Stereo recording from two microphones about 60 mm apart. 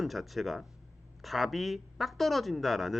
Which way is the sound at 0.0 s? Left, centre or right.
Centre.